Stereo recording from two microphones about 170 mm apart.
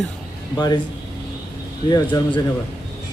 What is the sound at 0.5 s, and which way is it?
Speech, 25° left (ahead or behind).